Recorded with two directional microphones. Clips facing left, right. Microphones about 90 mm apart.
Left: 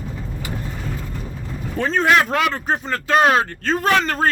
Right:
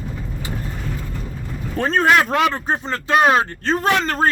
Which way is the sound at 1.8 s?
50° right (ahead or behind).